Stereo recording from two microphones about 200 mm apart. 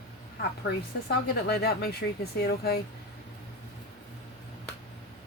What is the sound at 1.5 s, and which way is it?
Speech, 50° left (ahead or behind).